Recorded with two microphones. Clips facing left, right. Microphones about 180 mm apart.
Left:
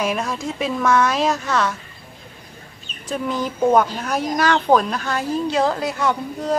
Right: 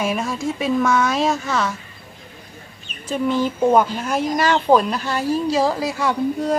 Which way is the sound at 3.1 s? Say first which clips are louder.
Right 4 dB; centre (ahead or behind).